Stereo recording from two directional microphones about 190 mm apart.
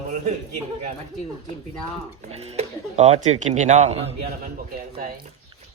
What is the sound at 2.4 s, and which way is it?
Speech, 35° right (ahead or behind).